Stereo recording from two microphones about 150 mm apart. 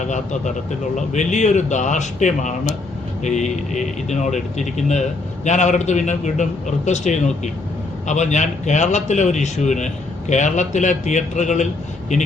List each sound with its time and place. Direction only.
0.9 s a man's voice: 55° left (ahead or behind)